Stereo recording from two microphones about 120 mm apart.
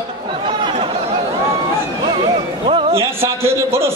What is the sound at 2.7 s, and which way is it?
Speech, 45° right (ahead or behind).